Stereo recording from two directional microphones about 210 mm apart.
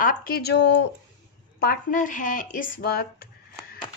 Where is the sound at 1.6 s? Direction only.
45° left (ahead or behind).